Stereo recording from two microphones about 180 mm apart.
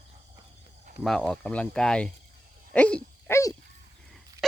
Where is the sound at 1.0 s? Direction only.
Centre (ahead or behind).